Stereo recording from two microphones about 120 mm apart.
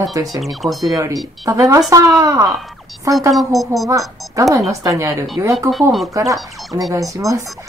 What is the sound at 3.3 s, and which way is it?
Speech, centre (ahead or behind).